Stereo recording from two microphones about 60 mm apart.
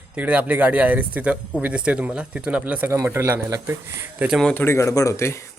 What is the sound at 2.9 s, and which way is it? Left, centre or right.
Speech, right.